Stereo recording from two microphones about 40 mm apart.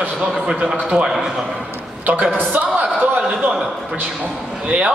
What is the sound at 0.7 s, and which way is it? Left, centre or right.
Speech, centre.